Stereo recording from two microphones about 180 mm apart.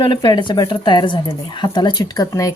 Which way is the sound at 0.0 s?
25° left (ahead or behind).